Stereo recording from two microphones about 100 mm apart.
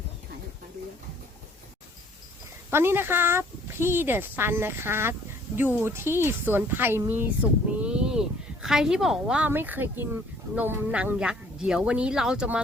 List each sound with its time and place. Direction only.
2.6 s a woman's voice: 20° right (ahead or behind)
9.5 s speech: 20° right (ahead or behind)